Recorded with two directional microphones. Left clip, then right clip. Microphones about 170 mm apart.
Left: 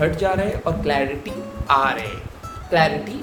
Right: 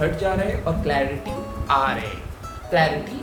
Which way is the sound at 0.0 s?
45° left (ahead or behind).